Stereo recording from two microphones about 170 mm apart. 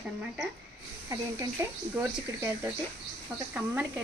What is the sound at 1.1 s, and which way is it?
A woman's voice, 20° right (ahead or behind).